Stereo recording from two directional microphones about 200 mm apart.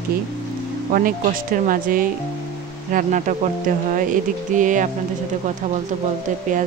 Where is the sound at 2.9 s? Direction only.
40° right (ahead or behind).